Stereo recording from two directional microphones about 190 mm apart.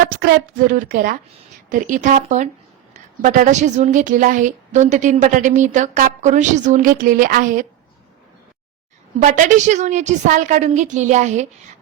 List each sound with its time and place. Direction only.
0.2 s a woman's voice: 50° right (ahead or behind)
9.2 s a woman's voice: 40° right (ahead or behind)